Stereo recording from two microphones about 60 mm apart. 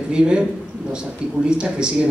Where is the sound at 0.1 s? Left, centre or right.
Centre.